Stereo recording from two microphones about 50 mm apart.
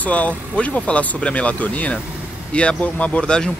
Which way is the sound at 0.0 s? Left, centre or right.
Left.